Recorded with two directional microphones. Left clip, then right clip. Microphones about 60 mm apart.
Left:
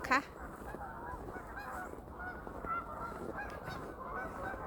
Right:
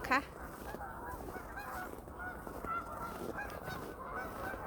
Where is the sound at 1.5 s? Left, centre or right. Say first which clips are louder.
Even; right.